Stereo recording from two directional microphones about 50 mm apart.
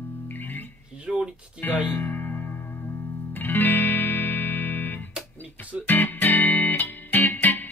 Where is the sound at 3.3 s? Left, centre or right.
Left.